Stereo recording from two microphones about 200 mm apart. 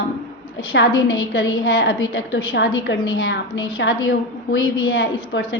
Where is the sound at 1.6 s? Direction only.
65° left (ahead or behind).